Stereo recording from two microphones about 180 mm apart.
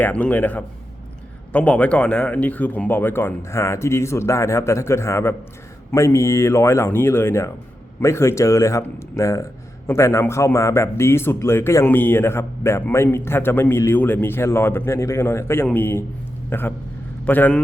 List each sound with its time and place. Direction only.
0.0 s a man's voice: 10° left (ahead or behind)